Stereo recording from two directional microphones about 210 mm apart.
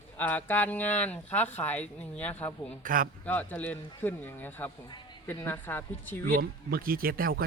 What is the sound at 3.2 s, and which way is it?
Speech, 5° left (ahead or behind).